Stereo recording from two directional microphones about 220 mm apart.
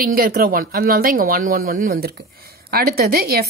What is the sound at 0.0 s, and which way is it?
Speech, 40° right (ahead or behind).